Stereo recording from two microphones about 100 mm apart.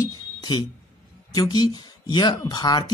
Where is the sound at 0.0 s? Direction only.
45° left (ahead or behind).